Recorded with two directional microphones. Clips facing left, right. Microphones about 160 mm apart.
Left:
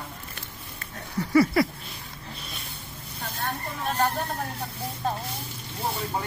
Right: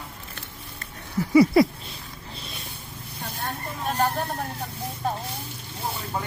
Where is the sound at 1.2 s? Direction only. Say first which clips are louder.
Right 4 dB; 15° right (ahead or behind).